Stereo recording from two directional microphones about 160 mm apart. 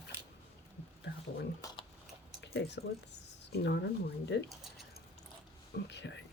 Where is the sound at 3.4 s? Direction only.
90° left.